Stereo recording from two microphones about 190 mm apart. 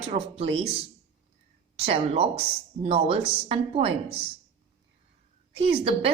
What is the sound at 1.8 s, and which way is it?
A woman's voice, 30° right (ahead or behind).